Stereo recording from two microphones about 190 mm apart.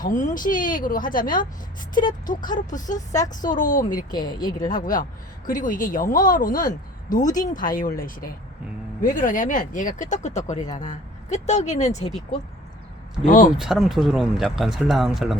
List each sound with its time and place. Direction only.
0.0 s speech: 45° left (ahead or behind)
3.1 s speech: 20° left (ahead or behind)
3.5 s speech: 45° left (ahead or behind)
4.1 s speech: 20° left (ahead or behind)
4.7 s speech: 45° left (ahead or behind)
13.2 s speech: 45° left (ahead or behind)
13.6 s speech: centre (ahead or behind)